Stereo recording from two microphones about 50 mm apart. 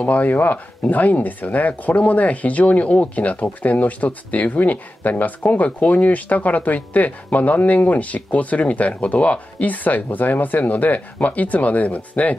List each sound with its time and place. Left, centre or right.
0.0 s speech: left